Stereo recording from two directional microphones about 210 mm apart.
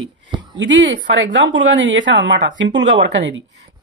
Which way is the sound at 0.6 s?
60° right (ahead or behind).